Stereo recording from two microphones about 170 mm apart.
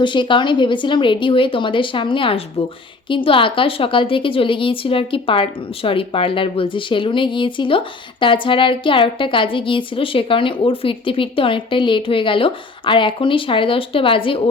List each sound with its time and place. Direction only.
0.0 s a woman's voice: 30° left (ahead or behind)